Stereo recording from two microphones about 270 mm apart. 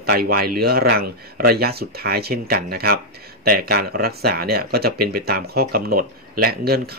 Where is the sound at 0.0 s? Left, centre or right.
Right.